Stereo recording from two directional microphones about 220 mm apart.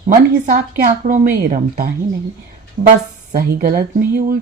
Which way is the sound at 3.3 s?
40° right (ahead or behind).